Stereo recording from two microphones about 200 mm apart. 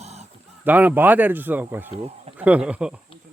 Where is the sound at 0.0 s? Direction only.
30° right (ahead or behind).